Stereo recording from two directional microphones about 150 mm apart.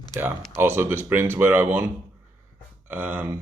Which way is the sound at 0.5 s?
15° right (ahead or behind).